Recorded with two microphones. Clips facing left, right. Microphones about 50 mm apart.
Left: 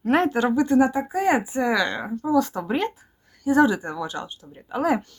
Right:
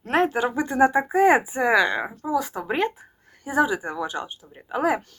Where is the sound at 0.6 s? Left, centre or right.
Centre.